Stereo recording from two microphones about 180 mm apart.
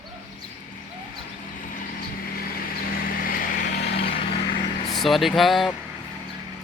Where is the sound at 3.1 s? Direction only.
50° left (ahead or behind).